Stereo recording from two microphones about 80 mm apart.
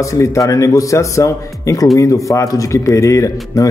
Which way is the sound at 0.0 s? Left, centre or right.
Left.